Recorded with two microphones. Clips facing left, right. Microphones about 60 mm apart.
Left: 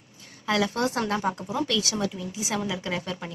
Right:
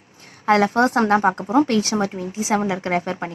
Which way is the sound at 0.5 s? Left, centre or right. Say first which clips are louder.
Right 9 dB; right.